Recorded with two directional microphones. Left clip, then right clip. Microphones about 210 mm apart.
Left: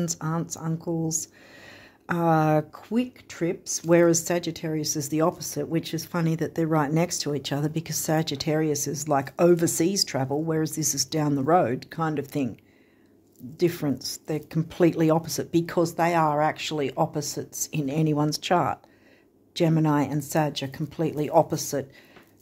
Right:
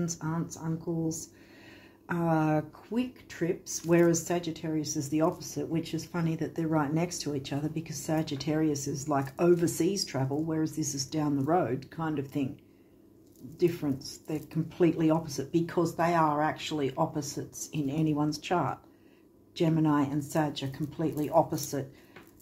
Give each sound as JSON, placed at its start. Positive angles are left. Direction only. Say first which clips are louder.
{"t": 0.0, "sound": "speech", "louder": "left 5 dB", "side_deg": 55}
{"t": 13.6, "sound": "speech", "louder": "left 4 dB", "side_deg": 55}